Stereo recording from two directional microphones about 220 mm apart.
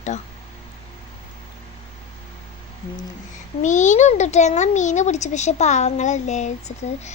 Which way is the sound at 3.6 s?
35° left (ahead or behind).